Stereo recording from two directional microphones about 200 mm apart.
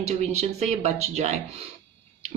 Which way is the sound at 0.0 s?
35° right (ahead or behind).